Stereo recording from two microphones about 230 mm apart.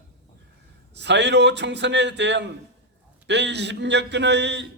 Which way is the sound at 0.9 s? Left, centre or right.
Right.